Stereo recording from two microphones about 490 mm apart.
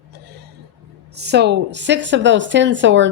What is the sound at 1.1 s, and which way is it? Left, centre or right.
A woman's voice, centre.